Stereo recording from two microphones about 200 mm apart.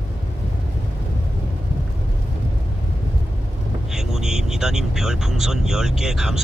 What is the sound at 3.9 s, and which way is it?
Speech, 5° right (ahead or behind).